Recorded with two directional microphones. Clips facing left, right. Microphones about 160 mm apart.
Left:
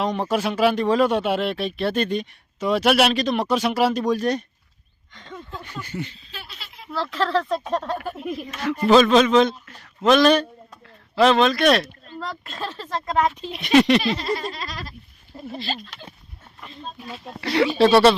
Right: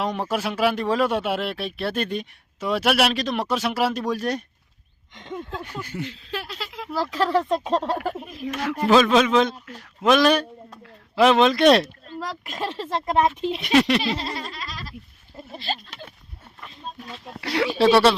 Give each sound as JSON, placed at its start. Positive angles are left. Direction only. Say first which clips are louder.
{"t": 0.0, "sound": "speech", "louder": "left 3 dB", "side_deg": -5}
{"t": 5.1, "sound": "speech", "louder": "right 5 dB", "side_deg": -20}
{"t": 5.6, "sound": "speech", "louder": "even", "side_deg": -5}
{"t": 6.1, "sound": "a sound", "louder": "right 9 dB", "side_deg": -90}
{"t": 6.9, "sound": "speech", "louder": "right 1 dB", "side_deg": -10}
{"t": 7.4, "sound": "speech", "louder": "right 2 dB", "side_deg": -25}
{"t": 8.9, "sound": "speech", "louder": "left 2 dB", "side_deg": -5}
{"t": 12.0, "sound": "speech", "louder": "right 1 dB", "side_deg": -10}
{"t": 13.6, "sound": "speech", "louder": "left 4 dB", "side_deg": 0}
{"t": 16.6, "sound": "speech", "louder": "left 1 dB", "side_deg": 5}